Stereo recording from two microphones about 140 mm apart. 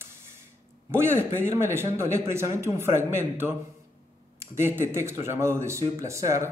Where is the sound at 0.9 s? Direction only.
15° right (ahead or behind).